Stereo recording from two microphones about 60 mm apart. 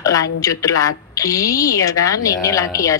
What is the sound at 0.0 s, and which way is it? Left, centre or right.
A woman's voice, left.